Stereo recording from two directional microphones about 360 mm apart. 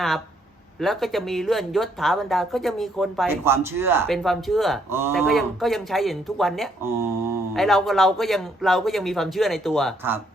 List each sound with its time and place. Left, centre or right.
0.8 s speech: centre